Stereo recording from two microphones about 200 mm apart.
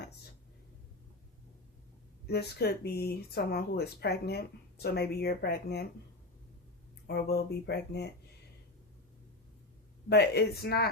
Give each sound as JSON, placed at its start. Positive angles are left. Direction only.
{"t": 2.2, "sound": "speech", "side_deg": 55}
{"t": 7.1, "sound": "speech", "side_deg": 55}
{"t": 10.1, "sound": "speech", "side_deg": 55}